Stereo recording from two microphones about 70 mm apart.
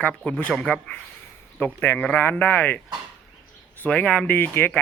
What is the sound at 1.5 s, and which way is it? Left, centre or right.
Speech, left.